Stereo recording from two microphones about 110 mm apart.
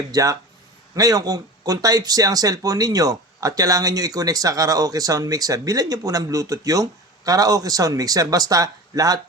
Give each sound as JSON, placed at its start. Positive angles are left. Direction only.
{"t": 0.1, "sound": "speech", "side_deg": -30}